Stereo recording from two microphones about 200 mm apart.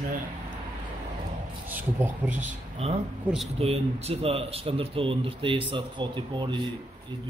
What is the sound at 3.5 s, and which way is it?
Speech, 30° right (ahead or behind).